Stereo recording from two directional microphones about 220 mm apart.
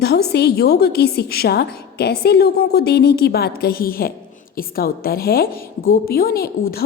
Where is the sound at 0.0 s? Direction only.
50° left (ahead or behind).